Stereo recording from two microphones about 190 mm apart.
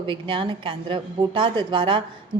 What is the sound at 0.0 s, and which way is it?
A woman's voice, 25° right (ahead or behind).